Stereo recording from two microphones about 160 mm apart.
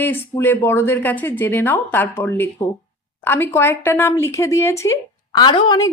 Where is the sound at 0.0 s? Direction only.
15° left (ahead or behind).